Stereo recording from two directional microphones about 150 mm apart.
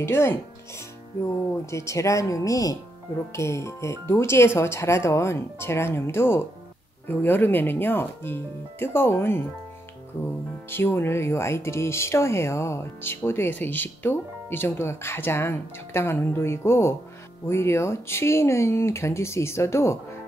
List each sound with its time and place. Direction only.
0.0 s speech: 15° left (ahead or behind)
10.7 s speech: 15° left (ahead or behind)